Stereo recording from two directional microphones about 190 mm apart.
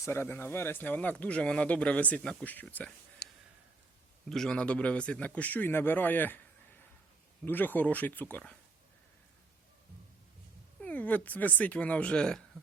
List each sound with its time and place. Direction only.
0.0 s speech: 15° left (ahead or behind)
3.2 s a sound: 55° left (ahead or behind)
4.3 s speech: 5° left (ahead or behind)
7.4 s speech: 10° left (ahead or behind)
10.8 s speech: 10° left (ahead or behind)